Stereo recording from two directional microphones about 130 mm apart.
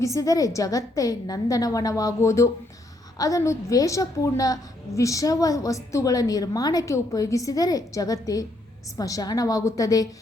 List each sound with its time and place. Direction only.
0.0 s a woman's voice: 25° left (ahead or behind)